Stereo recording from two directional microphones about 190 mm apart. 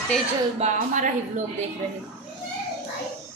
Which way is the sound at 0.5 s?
40° right (ahead or behind).